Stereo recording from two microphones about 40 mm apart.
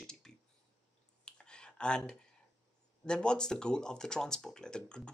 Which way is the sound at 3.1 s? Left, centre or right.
Left.